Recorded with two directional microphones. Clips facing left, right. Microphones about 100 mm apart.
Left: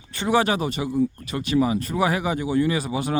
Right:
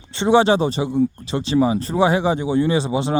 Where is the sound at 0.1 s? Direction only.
25° right (ahead or behind).